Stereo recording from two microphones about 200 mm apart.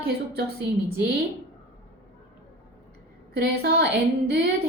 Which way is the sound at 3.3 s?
55° right (ahead or behind).